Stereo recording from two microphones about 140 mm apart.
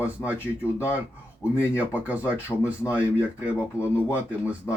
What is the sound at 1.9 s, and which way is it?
A man's voice, 10° right (ahead or behind).